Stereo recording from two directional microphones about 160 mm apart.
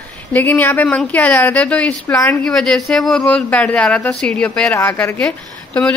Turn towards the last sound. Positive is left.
turn(degrees=10)  # may be behind; listen again after turning